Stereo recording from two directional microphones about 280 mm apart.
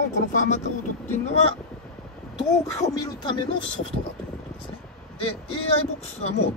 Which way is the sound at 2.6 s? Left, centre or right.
Centre.